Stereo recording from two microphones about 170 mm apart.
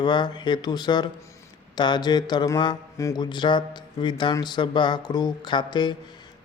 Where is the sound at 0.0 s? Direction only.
25° left (ahead or behind).